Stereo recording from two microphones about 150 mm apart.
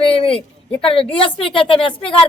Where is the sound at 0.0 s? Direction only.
40° left (ahead or behind).